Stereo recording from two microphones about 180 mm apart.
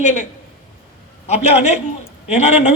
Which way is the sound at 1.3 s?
35° left (ahead or behind).